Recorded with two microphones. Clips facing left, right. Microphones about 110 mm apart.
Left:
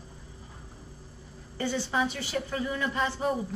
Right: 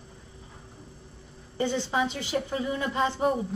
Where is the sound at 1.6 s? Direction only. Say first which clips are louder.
Right 2 dB; 20° right (ahead or behind).